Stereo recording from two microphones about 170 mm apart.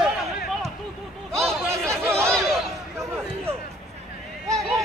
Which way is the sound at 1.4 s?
5° left (ahead or behind).